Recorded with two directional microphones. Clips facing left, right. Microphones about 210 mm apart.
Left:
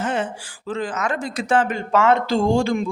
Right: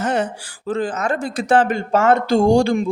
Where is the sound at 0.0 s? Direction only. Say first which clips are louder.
Right 3 dB; 40° right (ahead or behind).